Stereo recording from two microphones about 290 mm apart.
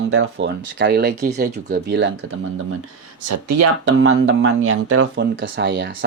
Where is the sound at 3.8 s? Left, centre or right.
Right.